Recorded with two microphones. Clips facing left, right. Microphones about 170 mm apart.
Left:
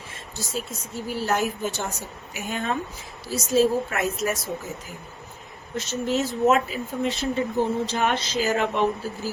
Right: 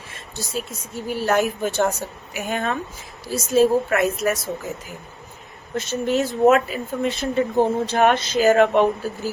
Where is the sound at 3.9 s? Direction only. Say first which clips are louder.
Right 5 dB; 65° right (ahead or behind).